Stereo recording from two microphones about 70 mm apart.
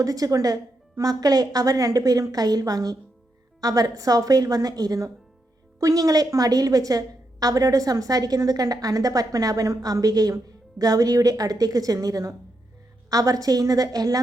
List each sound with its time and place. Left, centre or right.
0.0 s a woman's voice: right